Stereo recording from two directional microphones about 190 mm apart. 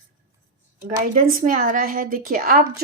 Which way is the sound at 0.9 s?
45° right (ahead or behind).